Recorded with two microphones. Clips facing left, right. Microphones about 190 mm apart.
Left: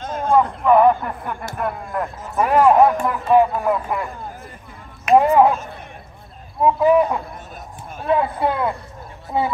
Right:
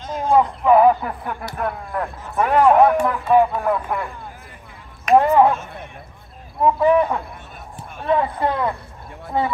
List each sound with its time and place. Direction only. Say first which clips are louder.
0.2 s a sound: even; 15° right (ahead or behind)
0.7 s a man's voice: even; 5° right (ahead or behind); by 5.5 s 10° left (ahead or behind)
6.6 s speech: left 1 dB; 5° left (ahead or behind)